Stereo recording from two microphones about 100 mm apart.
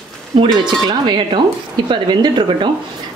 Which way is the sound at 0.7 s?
45° right (ahead or behind).